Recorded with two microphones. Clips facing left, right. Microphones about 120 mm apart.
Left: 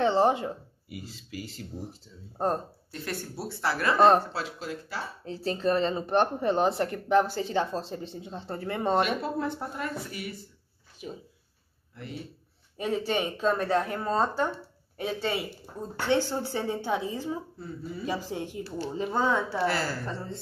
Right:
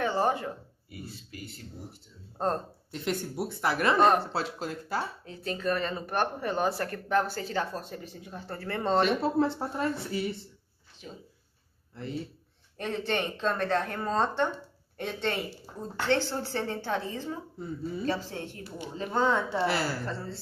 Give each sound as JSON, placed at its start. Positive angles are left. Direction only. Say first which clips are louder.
{"t": 0.0, "sound": "speech", "louder": "left 4 dB", "side_deg": 20}
{"t": 0.9, "sound": "speech", "louder": "left 3 dB", "side_deg": 90}
{"t": 2.3, "sound": "speech", "louder": "left 1 dB", "side_deg": 15}
{"t": 2.9, "sound": "a woman's voice", "louder": "right 4 dB", "side_deg": -20}
{"t": 4.3, "sound": "speech", "louder": "right 2 dB", "side_deg": -40}
{"t": 5.2, "sound": "speech", "louder": "left 4 dB", "side_deg": 30}
{"t": 9.2, "sound": "a woman's voice", "louder": "right 4 dB", "side_deg": -30}
{"t": 11.0, "sound": "speech", "louder": "left 5 dB", "side_deg": 10}
{"t": 11.9, "sound": "speech", "louder": "right 4 dB", "side_deg": -30}
{"t": 12.7, "sound": "speech", "louder": "left 2 dB", "side_deg": 10}
{"t": 19.6, "sound": "a woman's voice", "louder": "even", "side_deg": -15}
{"t": 20.1, "sound": "speech", "louder": "even", "side_deg": 15}